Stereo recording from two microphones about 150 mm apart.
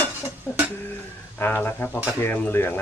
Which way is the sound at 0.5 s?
15° left (ahead or behind).